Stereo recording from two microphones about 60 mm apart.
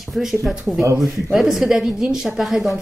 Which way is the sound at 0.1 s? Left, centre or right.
Centre.